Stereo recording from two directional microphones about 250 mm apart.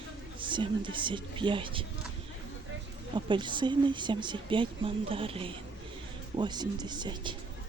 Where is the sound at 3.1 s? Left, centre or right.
Centre.